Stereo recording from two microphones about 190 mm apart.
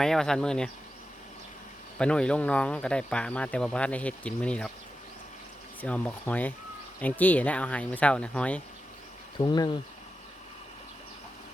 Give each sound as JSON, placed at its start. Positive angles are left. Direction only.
{"t": 0.0, "sound": "speech", "side_deg": 5}
{"t": 2.0, "sound": "speech", "side_deg": 5}
{"t": 5.8, "sound": "speech", "side_deg": 10}
{"t": 9.4, "sound": "speech", "side_deg": 25}